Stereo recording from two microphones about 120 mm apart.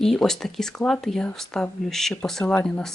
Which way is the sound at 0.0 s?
5° left (ahead or behind).